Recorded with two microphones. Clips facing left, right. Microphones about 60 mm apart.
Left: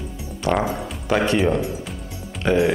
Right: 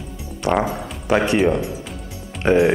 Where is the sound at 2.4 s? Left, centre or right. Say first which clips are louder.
Right 3 dB; right.